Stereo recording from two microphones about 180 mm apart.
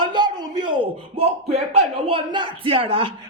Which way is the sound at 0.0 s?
25° right (ahead or behind).